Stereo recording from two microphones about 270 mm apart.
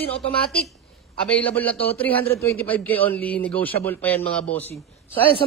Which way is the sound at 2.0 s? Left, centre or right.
Centre.